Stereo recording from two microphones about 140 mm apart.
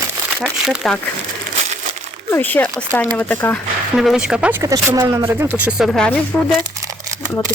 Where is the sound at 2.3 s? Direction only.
15° left (ahead or behind).